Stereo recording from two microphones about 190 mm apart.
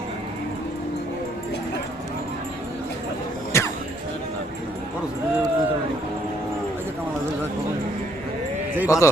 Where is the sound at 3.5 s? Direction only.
15° left (ahead or behind).